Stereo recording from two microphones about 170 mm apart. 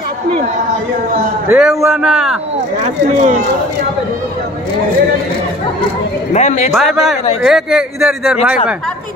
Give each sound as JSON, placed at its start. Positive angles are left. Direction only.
{"t": 1.5, "sound": "speech", "side_deg": -5}
{"t": 2.8, "sound": "speech", "side_deg": -40}
{"t": 6.3, "sound": "a man's voice", "side_deg": 40}
{"t": 6.7, "sound": "speech", "side_deg": 0}